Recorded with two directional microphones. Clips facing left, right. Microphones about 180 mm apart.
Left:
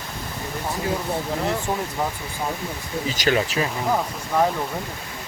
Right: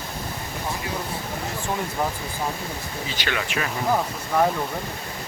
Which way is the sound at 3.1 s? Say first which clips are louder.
Left 6 dB; 35° left (ahead or behind).